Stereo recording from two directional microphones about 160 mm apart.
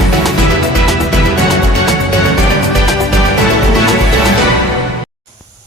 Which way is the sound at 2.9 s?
Centre (ahead or behind).